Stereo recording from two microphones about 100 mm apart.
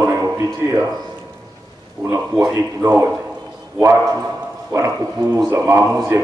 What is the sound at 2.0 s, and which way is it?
A man's voice, 35° right (ahead or behind).